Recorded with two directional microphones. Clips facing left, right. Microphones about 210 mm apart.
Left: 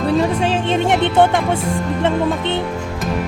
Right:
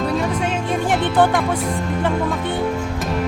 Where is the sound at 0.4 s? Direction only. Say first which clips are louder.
Left 4 dB; 30° left (ahead or behind).